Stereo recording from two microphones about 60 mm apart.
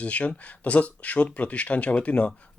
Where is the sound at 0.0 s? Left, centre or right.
Left.